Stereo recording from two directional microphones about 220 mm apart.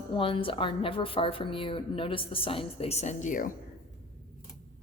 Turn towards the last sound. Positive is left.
turn(degrees=35)  # may be behind; listen again after turning